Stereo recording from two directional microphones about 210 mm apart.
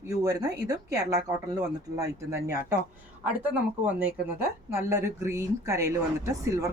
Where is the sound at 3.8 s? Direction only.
10° right (ahead or behind).